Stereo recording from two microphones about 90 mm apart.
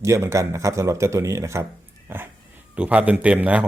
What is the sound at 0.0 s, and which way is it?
A man's voice, 35° right (ahead or behind).